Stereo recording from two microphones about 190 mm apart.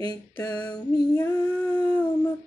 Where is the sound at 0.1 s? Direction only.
20° left (ahead or behind).